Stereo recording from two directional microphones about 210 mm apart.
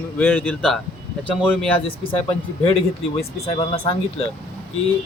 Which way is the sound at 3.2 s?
25° left (ahead or behind).